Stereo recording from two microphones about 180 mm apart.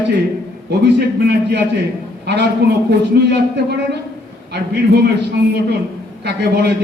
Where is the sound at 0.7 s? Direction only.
65° right (ahead or behind).